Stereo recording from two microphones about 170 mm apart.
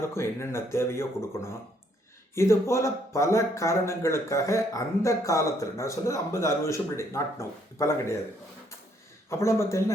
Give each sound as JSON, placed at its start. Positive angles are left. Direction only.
{"t": 0.1, "sound": "speech", "side_deg": 15}
{"t": 9.3, "sound": "speech", "side_deg": 15}